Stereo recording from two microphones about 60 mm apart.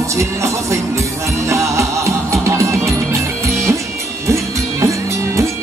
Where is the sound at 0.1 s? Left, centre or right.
Right.